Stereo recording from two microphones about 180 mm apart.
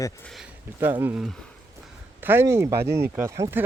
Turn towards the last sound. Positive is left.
turn(degrees=-15)  # may be behind; listen again after turning